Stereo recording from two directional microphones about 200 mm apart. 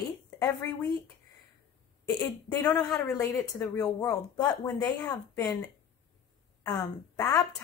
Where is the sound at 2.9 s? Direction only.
15° left (ahead or behind).